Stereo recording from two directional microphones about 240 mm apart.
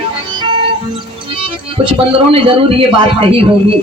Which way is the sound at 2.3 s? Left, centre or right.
Right.